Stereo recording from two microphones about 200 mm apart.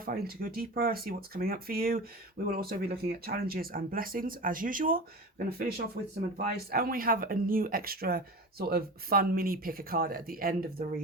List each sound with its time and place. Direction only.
0.0 s speech: 45° right (ahead or behind)